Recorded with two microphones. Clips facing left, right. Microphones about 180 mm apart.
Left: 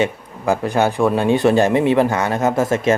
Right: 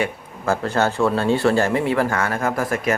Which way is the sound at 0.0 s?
15° left (ahead or behind).